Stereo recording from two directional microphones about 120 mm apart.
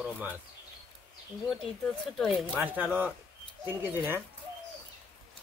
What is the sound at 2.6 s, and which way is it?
A man's voice, 15° right (ahead or behind).